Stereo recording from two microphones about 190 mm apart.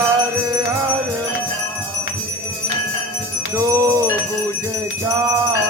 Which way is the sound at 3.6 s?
15° right (ahead or behind).